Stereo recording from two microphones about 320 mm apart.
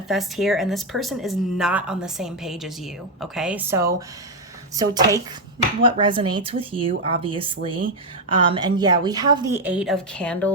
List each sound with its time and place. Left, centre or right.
0.1 s a woman's voice: centre